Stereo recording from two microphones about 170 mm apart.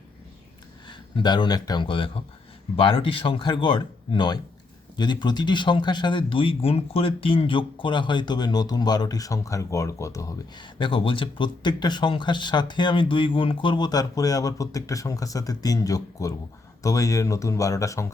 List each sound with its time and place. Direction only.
0.9 s speech: 25° left (ahead or behind)